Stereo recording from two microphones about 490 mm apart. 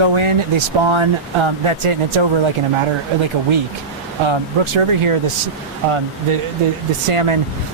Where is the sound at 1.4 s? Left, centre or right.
Right.